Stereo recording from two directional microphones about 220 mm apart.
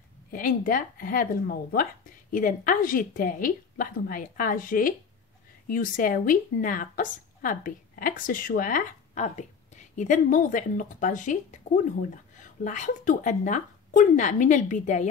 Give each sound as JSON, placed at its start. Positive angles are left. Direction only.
{"t": 0.3, "sound": "a woman's voice", "side_deg": 40}